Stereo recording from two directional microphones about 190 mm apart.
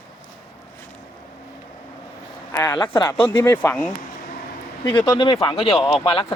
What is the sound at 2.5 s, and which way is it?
Speech, 15° left (ahead or behind).